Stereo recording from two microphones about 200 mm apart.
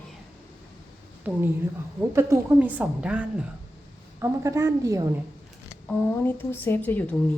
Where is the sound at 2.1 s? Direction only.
10° right (ahead or behind).